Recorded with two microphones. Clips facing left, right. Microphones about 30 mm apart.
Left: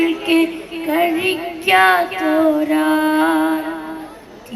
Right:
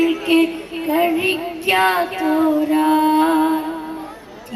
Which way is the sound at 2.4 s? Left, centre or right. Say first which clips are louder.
Left 2 dB; centre.